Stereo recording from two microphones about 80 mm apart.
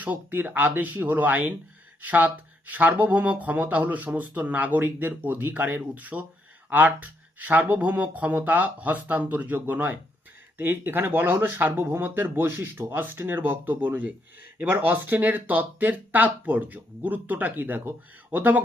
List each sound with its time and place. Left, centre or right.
0.0 s speech: right